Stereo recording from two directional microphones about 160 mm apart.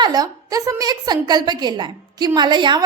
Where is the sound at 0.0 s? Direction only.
25° right (ahead or behind).